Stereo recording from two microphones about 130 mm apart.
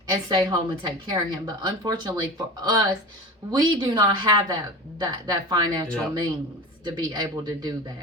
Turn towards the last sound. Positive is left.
turn(degrees=-30)  # may be behind; listen again after turning